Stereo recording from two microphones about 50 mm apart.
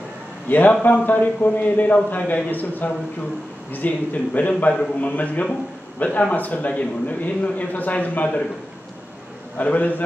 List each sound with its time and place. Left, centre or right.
0.5 s a man's voice: left
9.6 s a man's voice: left